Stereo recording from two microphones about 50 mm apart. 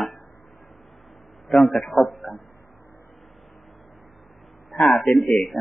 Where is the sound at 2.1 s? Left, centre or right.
Left.